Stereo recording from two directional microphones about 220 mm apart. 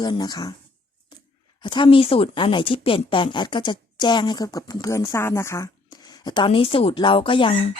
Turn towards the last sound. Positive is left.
turn(degrees=25)  # may be behind; listen again after turning